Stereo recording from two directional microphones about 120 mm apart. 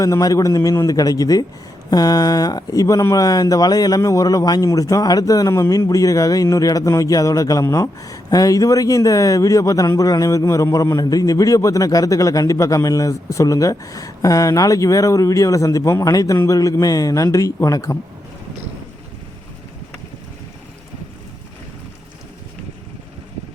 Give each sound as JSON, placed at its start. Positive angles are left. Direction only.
{"t": 0.0, "sound": "speech", "side_deg": 30}